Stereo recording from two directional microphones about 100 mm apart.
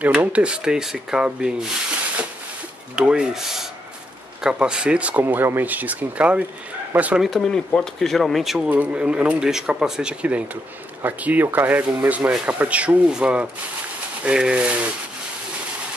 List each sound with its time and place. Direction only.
0.0 s speech: 15° right (ahead or behind)
3.0 s speech: 5° right (ahead or behind)
5.2 s speech: 20° right (ahead or behind)
7.2 s speech: 5° left (ahead or behind)
8.6 s speech: 15° right (ahead or behind)